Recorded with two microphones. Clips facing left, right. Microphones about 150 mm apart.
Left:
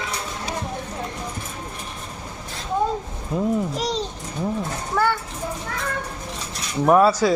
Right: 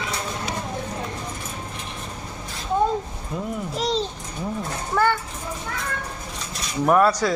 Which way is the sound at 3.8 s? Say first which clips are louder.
Right 1 dB; 10° left (ahead or behind).